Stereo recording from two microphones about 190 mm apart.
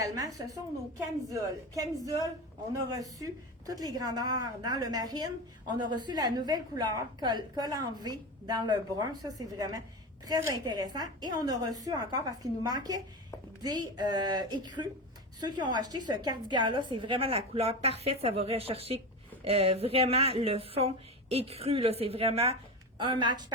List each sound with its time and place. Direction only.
0.0 s a woman's voice: 20° right (ahead or behind)